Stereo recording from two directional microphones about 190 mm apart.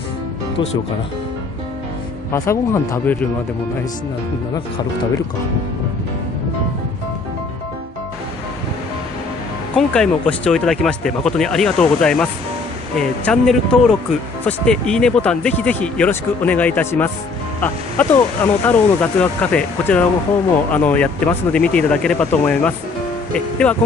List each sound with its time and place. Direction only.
2.3 s speech: 15° left (ahead or behind)
9.8 s speech: 5° left (ahead or behind)